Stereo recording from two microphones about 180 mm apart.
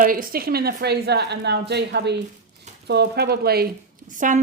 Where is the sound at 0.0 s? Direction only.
50° right (ahead or behind).